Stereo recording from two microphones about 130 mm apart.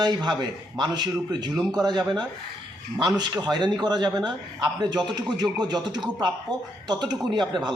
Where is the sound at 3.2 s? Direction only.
30° right (ahead or behind).